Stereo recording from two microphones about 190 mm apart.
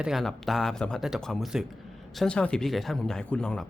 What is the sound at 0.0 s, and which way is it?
Speech, centre (ahead or behind).